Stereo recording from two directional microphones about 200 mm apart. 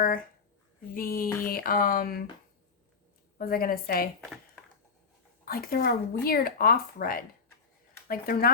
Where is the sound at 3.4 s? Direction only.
45° left (ahead or behind).